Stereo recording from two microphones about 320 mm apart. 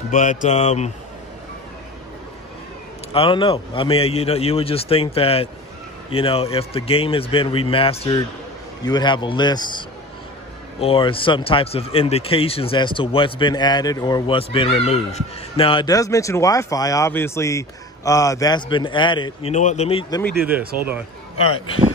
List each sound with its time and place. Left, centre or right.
0.1 s speech: left
3.1 s speech: centre
20.3 s speech: centre